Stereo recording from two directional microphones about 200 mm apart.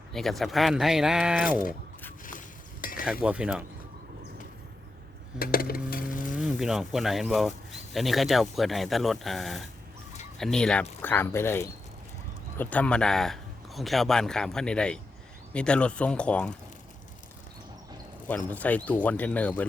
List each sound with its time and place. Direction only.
0.1 s speech: centre (ahead or behind)
3.0 s speech: 5° right (ahead or behind)
5.4 s a sound: 45° left (ahead or behind)
6.3 s speech: 5° right (ahead or behind)
18.3 s speech: 5° left (ahead or behind)